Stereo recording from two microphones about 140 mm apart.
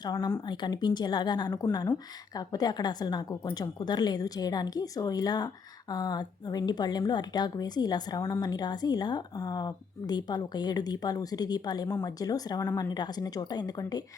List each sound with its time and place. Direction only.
0.0 s a woman's voice: 30° left (ahead or behind)